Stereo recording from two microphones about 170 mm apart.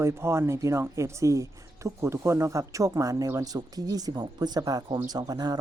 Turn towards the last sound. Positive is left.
turn(degrees=-25)  # may be behind; listen again after turning